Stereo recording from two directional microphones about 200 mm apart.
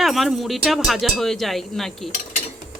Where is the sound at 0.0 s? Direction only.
Centre (ahead or behind).